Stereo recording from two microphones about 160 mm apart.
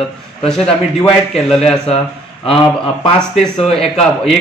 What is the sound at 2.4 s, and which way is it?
Speech, 35° left (ahead or behind).